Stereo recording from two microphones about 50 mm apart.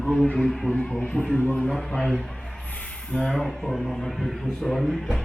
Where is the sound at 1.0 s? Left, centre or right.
Left.